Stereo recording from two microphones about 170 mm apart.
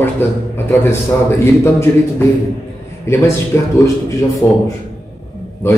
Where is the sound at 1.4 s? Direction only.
15° left (ahead or behind).